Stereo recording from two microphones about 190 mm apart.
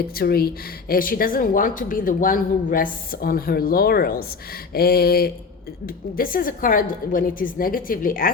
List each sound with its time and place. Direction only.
0.0 s a woman's voice: 55° left (ahead or behind)
4.7 s a sound: 55° left (ahead or behind)
6.1 s a woman's voice: 50° left (ahead or behind)